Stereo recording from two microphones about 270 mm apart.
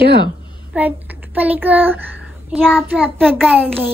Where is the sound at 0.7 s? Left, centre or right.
Centre.